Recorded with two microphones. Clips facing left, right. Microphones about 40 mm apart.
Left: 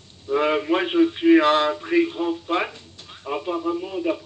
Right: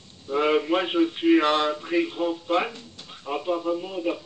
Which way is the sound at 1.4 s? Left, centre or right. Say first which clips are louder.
Left 4 dB; left.